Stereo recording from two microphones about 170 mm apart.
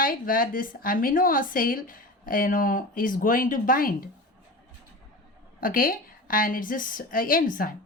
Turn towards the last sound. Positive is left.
turn(degrees=55)  # may be behind; listen again after turning